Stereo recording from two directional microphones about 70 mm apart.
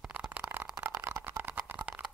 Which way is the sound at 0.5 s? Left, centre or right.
Right.